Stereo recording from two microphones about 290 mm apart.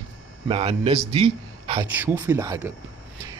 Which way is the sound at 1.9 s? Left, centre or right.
Centre.